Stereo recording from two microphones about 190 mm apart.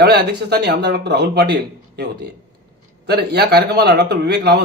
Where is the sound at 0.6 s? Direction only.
65° right (ahead or behind).